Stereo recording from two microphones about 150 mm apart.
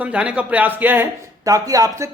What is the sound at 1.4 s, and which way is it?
Speech, 25° right (ahead or behind).